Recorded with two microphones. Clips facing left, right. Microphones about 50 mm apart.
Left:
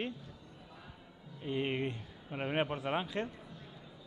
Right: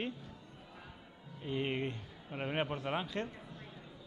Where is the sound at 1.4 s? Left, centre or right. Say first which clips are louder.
Left 1 dB; centre.